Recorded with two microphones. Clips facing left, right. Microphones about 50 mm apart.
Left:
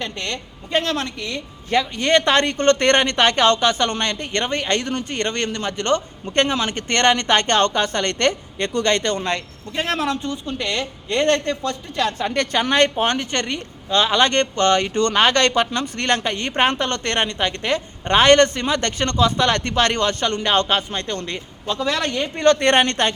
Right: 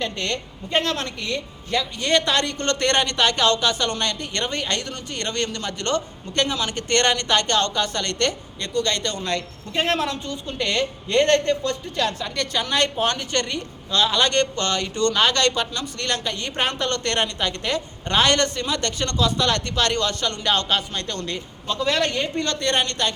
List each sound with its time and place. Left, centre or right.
0.0 s a woman's voice: centre
1.7 s a woman's voice: left
8.5 s speech: left
10.0 s a woman's voice: centre
12.2 s a woman's voice: left; by 22.3 s centre
22.4 s speech: left